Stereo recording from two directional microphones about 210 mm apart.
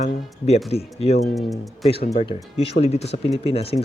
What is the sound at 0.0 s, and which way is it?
Speech, 30° left (ahead or behind).